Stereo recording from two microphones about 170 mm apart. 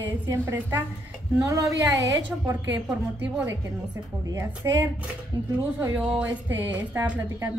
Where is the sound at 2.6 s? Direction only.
90° right.